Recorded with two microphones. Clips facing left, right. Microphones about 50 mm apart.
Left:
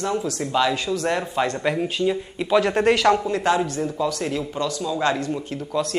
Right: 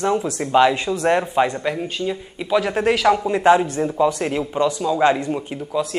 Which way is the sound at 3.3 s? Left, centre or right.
Right.